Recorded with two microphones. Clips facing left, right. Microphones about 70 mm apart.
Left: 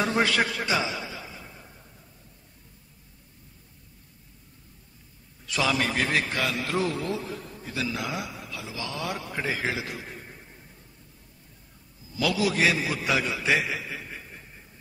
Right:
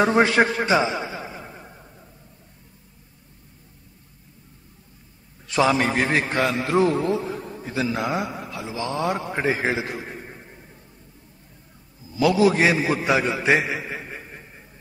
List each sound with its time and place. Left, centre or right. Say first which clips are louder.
0.0 s a man's voice: right 7 dB; right
5.5 s a man's voice: right 6 dB; right
12.2 s a man's voice: right 7 dB; right